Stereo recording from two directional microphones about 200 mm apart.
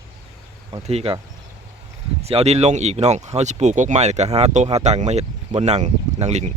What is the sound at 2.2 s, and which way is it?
Speech, 30° right (ahead or behind).